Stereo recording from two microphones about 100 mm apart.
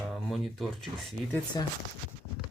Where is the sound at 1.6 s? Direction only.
40° left (ahead or behind).